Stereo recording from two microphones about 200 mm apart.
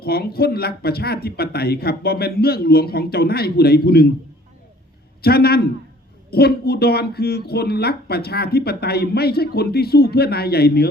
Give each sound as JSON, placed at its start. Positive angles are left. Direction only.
{"t": 0.0, "sound": "speech", "side_deg": 50}
{"t": 5.2, "sound": "speech", "side_deg": 50}